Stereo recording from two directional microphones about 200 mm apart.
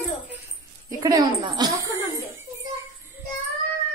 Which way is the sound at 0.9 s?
15° right (ahead or behind).